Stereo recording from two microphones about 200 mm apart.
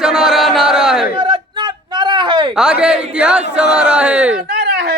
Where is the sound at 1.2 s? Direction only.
20° right (ahead or behind).